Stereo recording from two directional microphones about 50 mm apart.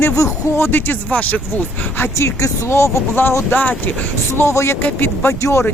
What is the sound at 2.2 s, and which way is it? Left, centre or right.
Speech, left.